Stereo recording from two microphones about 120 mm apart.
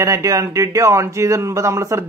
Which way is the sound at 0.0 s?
25° right (ahead or behind).